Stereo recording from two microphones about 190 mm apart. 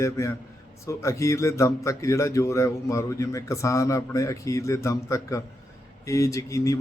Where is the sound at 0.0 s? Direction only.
15° left (ahead or behind).